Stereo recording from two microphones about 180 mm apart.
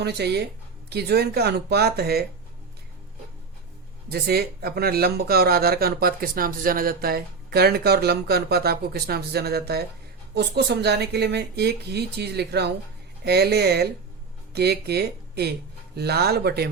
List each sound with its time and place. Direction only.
0.0 s speech: 70° right (ahead or behind)
4.1 s speech: 60° right (ahead or behind)